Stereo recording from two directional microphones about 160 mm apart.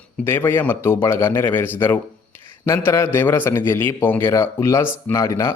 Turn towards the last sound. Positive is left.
turn(degrees=20)  # may be behind; listen again after turning